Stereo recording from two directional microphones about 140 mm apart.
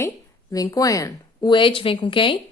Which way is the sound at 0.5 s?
25° left (ahead or behind).